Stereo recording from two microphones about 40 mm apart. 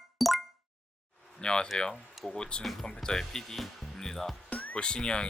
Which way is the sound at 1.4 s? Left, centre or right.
Left.